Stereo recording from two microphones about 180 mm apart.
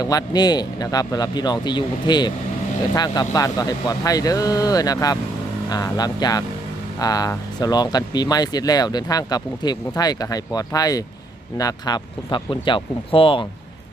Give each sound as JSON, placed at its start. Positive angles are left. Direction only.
{"t": 0.0, "sound": "speech", "side_deg": 20}